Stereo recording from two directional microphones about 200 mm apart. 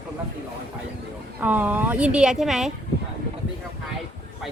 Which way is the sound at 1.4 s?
10° right (ahead or behind).